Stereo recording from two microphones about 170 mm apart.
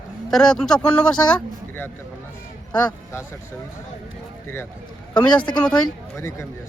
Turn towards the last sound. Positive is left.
turn(degrees=15)  # may be behind; listen again after turning